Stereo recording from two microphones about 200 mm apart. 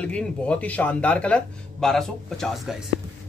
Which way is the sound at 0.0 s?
5° left (ahead or behind).